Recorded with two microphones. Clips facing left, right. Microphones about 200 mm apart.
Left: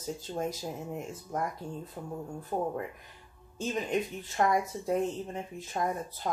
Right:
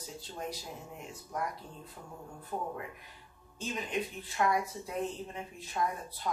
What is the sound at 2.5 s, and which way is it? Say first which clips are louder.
Speech: left 6 dB; 35° left (ahead or behind).